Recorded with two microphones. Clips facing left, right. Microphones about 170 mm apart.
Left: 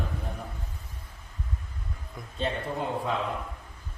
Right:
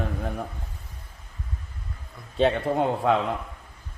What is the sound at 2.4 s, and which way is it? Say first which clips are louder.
Speech: right 9 dB; 75° right (ahead or behind).